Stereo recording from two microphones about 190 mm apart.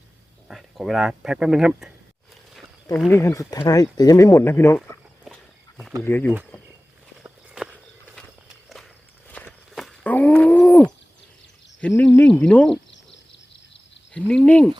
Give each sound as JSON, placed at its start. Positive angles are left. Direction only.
{"t": 0.4, "sound": "speech", "side_deg": 0}
{"t": 3.1, "sound": "speech", "side_deg": 15}
{"t": 4.8, "sound": "a sound", "side_deg": 0}
{"t": 6.0, "sound": "speech", "side_deg": 10}
{"t": 7.2, "sound": "walk", "side_deg": -5}
{"t": 9.3, "sound": "a sound", "side_deg": 10}
{"t": 11.8, "sound": "speech", "side_deg": 5}
{"t": 14.1, "sound": "speech", "side_deg": 5}